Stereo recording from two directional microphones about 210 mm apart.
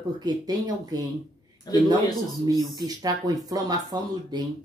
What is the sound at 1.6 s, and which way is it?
Speech, 20° left (ahead or behind).